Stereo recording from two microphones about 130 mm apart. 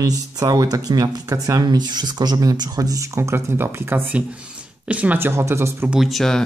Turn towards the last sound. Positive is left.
turn(degrees=0)  # may be behind; listen again after turning